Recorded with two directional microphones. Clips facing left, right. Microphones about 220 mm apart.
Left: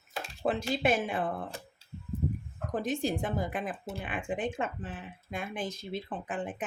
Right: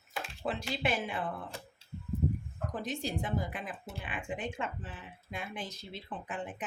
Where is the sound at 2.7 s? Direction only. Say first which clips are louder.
Left 6 dB; 50° left (ahead or behind).